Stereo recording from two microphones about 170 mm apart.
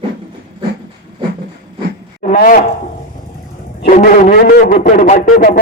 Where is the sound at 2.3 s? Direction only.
55° left (ahead or behind).